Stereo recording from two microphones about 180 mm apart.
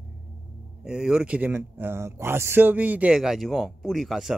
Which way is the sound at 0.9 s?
5° right (ahead or behind).